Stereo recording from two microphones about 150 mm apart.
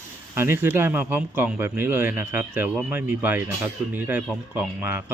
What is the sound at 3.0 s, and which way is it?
Speech, 10° right (ahead or behind).